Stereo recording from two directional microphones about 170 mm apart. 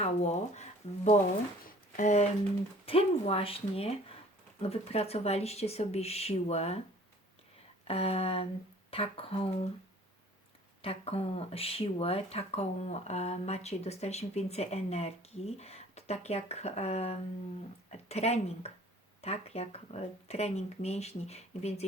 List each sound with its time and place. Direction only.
0.0 s speech: 40° left (ahead or behind)
1.6 s a sound: 45° left (ahead or behind)
2.8 s speech: 35° left (ahead or behind)
7.9 s speech: 35° left (ahead or behind)
10.8 s speech: 35° left (ahead or behind)